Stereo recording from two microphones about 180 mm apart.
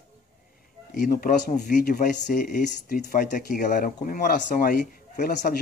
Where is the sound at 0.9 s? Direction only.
50° left (ahead or behind).